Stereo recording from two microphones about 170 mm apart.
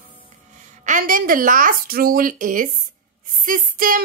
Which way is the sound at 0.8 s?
50° right (ahead or behind).